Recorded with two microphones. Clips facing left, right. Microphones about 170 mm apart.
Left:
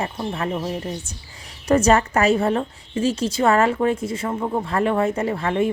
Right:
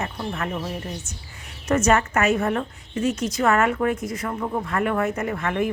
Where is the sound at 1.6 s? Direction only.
30° left (ahead or behind).